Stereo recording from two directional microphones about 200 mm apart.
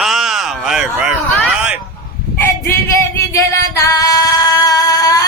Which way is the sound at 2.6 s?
15° left (ahead or behind).